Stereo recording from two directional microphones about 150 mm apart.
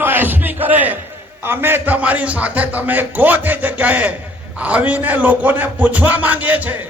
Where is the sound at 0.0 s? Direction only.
15° right (ahead or behind).